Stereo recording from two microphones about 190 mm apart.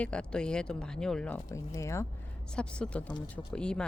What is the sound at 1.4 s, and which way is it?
Speech, 15° left (ahead or behind).